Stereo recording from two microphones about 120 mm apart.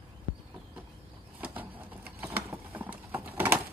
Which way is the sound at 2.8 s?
20° right (ahead or behind).